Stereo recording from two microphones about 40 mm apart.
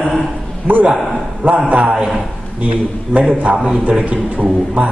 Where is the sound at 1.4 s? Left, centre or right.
Right.